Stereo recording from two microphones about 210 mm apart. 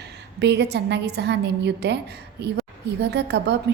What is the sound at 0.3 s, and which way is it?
A woman's voice, 55° right (ahead or behind).